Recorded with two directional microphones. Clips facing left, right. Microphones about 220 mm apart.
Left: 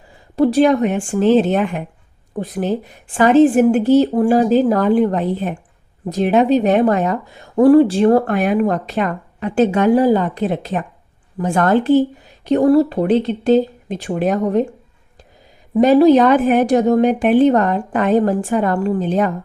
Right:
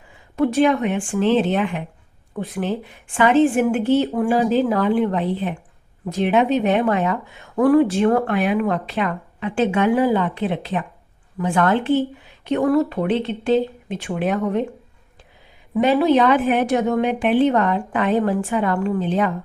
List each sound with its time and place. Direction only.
0.1 s a woman's voice: 35° left (ahead or behind)
16.0 s a woman's voice: 45° left (ahead or behind)